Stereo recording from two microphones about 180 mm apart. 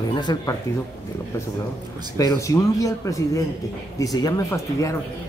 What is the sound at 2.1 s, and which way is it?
Speech, 20° left (ahead or behind).